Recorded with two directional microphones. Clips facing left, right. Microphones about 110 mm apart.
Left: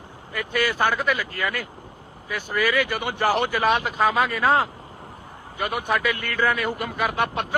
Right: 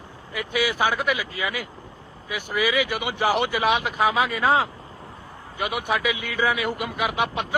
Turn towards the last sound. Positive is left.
turn(degrees=-15)  # may be behind; listen again after turning